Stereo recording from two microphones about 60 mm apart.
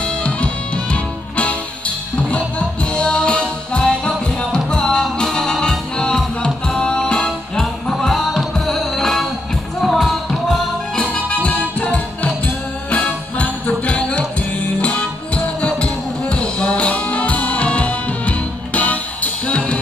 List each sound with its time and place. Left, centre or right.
0.0 s music: centre
7.2 s music: centre
11.0 s music: left